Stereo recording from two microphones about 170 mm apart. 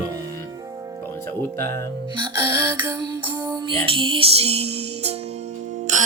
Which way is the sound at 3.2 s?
30° right (ahead or behind).